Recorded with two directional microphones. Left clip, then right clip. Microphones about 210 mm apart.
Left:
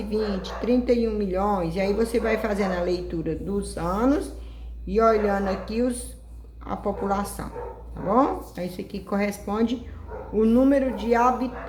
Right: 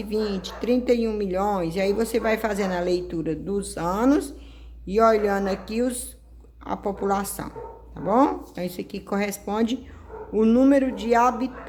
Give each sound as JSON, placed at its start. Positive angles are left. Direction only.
{"t": 0.1, "sound": "speech", "side_deg": -50}